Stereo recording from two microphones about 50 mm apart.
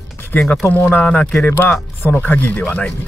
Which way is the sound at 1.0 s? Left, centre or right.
Left.